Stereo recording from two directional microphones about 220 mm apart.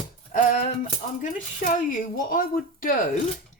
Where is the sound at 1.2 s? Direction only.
35° left (ahead or behind).